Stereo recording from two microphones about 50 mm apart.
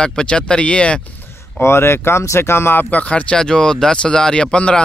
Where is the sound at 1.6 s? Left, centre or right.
Left.